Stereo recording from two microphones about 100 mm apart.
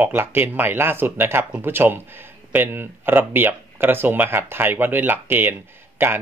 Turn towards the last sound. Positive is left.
turn(degrees=-25)  # may be behind; listen again after turning